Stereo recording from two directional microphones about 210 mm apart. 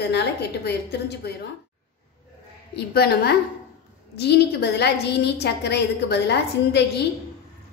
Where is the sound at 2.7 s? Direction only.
50° left (ahead or behind).